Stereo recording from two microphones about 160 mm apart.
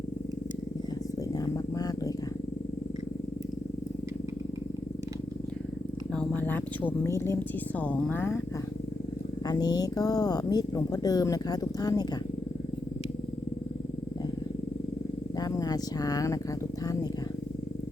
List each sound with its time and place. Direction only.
1.7 s wild animals: 25° left (ahead or behind)
6.1 s speech: 10° left (ahead or behind)
9.5 s speech: 25° left (ahead or behind)
15.4 s speech: 25° left (ahead or behind)